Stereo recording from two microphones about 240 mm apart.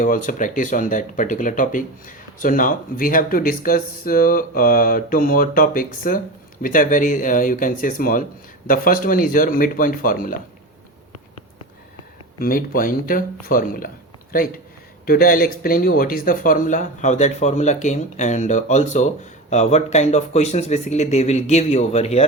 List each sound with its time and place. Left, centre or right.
0.0 s speech: left
12.4 s speech: left
15.0 s speech: left